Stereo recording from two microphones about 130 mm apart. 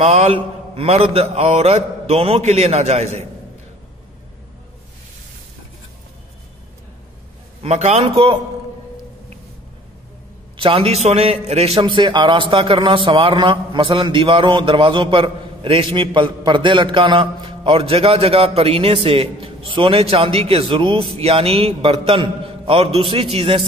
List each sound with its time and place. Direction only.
0.0 s a man's voice: 50° right (ahead or behind)
7.6 s a man's voice: 55° right (ahead or behind)
10.5 s a man's voice: 45° right (ahead or behind)